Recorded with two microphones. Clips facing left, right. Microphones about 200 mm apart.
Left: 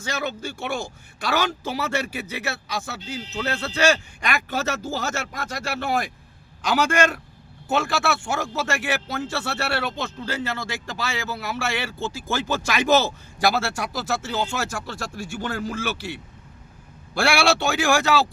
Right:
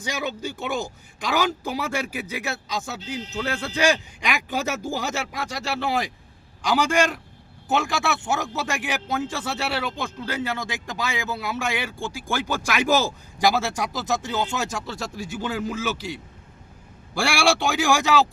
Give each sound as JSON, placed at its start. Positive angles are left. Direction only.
{"t": 0.0, "sound": "speech", "side_deg": -15}
{"t": 6.7, "sound": "speech", "side_deg": -15}
{"t": 17.2, "sound": "speech", "side_deg": -15}